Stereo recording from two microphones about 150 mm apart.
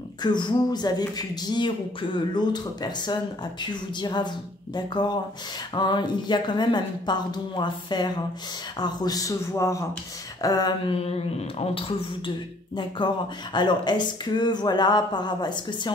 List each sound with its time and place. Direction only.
0.2 s speech: 30° left (ahead or behind)
10.9 s speech: 45° left (ahead or behind)
12.7 s speech: 30° left (ahead or behind)